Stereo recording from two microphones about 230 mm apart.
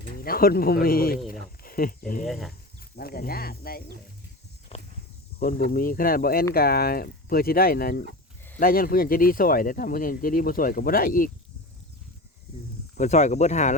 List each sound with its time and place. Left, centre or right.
0.2 s speech: left
1.3 s a sound: left
2.2 s speech: centre
2.5 s speech: left
4.7 s a sound: left
5.4 s speech: left
13.0 s speech: left